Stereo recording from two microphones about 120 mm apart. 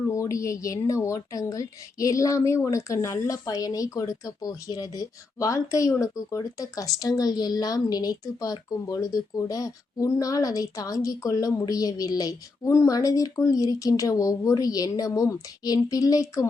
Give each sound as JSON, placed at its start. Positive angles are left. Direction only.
{"t": 0.1, "sound": "a woman's voice", "side_deg": 25}